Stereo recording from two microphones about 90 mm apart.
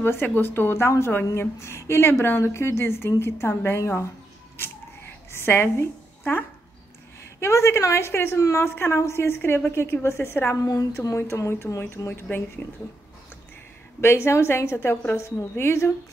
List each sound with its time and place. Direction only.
0.0 s a woman's voice: 25° left (ahead or behind)
5.3 s a woman's voice: 25° left (ahead or behind)
10.5 s a woman's voice: 40° left (ahead or behind)
12.1 s a woman's voice: 20° left (ahead or behind)
14.0 s a woman's voice: 30° left (ahead or behind)